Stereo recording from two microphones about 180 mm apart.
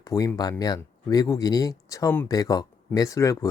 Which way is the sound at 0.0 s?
20° left (ahead or behind).